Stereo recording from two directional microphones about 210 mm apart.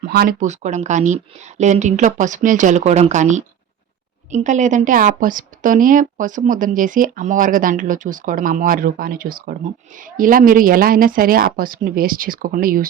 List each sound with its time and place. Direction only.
0.1 s a woman's voice: 45° right (ahead or behind)